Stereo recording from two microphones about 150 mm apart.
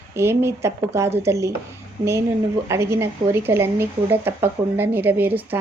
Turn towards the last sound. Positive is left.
turn(degrees=-15)  # may be behind; listen again after turning